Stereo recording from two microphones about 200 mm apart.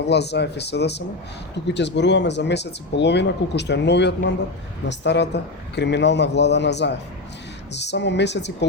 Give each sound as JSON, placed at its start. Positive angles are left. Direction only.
{"t": 0.0, "sound": "speech", "side_deg": 55}